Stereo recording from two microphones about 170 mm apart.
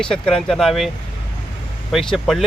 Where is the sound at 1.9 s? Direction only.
Centre (ahead or behind).